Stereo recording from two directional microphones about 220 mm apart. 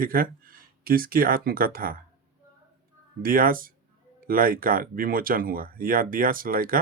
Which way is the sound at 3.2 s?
40° right (ahead or behind).